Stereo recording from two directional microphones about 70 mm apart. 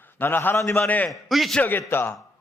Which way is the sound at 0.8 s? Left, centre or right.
Left.